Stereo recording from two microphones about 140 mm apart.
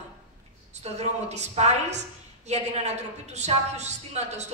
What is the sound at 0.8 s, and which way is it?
A woman's voice, 50° right (ahead or behind).